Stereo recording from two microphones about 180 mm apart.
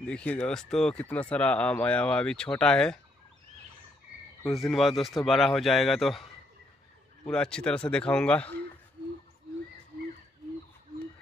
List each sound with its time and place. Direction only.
0.0 s speech: 5° left (ahead or behind)
4.6 s speech: centre (ahead or behind)
7.2 s speech: 5° left (ahead or behind)